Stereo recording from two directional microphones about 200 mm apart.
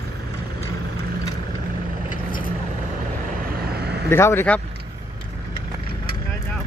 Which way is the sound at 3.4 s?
50° right (ahead or behind).